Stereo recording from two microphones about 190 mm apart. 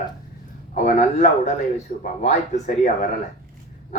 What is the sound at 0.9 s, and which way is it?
Speech, 40° left (ahead or behind).